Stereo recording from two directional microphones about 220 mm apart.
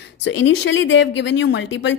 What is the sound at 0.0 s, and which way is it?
Speech, 55° left (ahead or behind).